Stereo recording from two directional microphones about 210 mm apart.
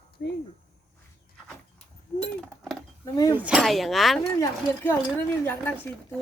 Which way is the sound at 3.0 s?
20° left (ahead or behind).